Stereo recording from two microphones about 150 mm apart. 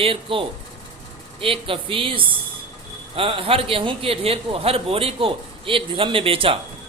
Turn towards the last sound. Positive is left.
turn(degrees=-35)  # may be behind; listen again after turning